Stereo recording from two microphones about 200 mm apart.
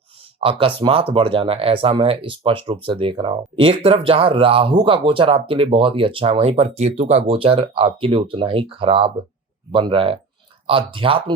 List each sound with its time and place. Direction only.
0.3 s speech: 25° right (ahead or behind)